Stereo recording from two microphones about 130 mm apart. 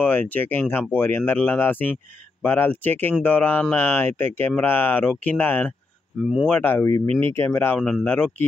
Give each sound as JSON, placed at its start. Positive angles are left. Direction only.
{"t": 0.0, "sound": "speech", "side_deg": 15}